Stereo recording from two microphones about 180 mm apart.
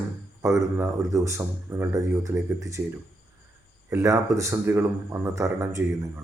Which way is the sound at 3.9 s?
15° right (ahead or behind).